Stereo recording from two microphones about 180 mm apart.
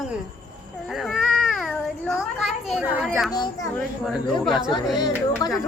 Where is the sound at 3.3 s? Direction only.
25° left (ahead or behind).